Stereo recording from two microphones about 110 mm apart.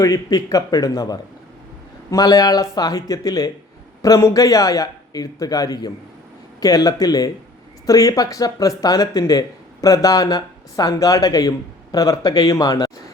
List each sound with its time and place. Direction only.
0.0 s speech: 35° left (ahead or behind)